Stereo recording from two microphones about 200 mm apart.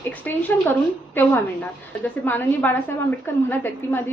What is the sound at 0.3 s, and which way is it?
Speech, 10° left (ahead or behind).